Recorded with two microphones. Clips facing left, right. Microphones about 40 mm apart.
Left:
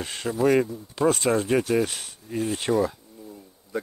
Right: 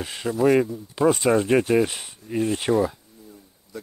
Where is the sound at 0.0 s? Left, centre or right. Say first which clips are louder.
Right 2 dB; centre.